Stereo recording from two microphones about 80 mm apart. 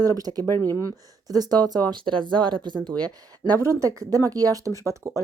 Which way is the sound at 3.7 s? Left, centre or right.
Right.